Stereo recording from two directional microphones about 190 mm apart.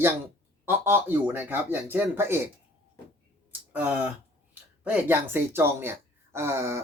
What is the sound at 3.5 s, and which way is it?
Speech, 10° right (ahead or behind).